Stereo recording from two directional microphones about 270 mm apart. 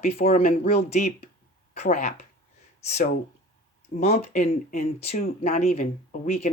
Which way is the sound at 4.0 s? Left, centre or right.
Left.